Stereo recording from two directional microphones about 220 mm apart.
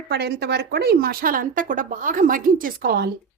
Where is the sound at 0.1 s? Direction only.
50° right (ahead or behind).